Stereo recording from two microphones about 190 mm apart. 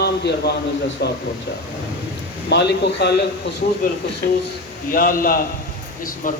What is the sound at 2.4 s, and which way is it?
Speech, 60° left (ahead or behind).